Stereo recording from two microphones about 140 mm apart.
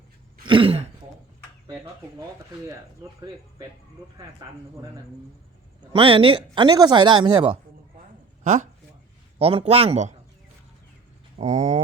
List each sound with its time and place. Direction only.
0.4 s throat clearing: 40° right (ahead or behind)
1.6 s speech: 25° right (ahead or behind)
4.2 s speech: 30° right (ahead or behind)
5.9 s speech: 40° right (ahead or behind)
9.4 s speech: 45° right (ahead or behind)
11.3 s a sound: 55° right (ahead or behind)